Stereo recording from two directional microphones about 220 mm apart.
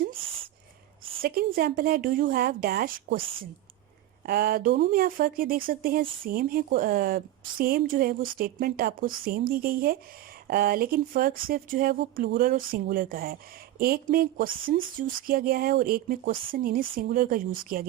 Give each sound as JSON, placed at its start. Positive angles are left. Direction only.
{"t": 1.2, "sound": "speech", "side_deg": -40}
{"t": 3.2, "sound": "speech", "side_deg": -25}
{"t": 4.3, "sound": "speech", "side_deg": -45}